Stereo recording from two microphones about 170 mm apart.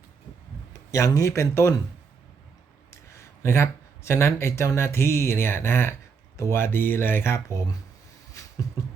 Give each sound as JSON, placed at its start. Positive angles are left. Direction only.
{"t": 0.7, "sound": "a man's voice", "side_deg": 20}
{"t": 3.1, "sound": "speech", "side_deg": 15}
{"t": 8.3, "sound": "a sound", "side_deg": 20}